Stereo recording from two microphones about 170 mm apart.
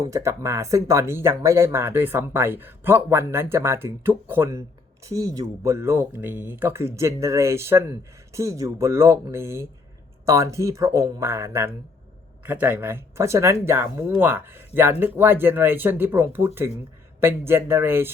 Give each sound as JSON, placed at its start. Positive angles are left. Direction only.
{"t": 0.0, "sound": "speech", "side_deg": -15}